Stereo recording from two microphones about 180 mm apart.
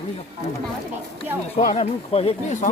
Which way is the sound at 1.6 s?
40° left (ahead or behind).